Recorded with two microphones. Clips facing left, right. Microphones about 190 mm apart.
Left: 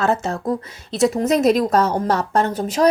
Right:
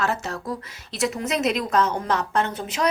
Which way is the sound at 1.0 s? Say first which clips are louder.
Left 8 dB; 40° left (ahead or behind).